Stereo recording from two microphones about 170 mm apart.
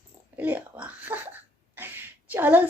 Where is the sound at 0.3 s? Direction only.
10° right (ahead or behind).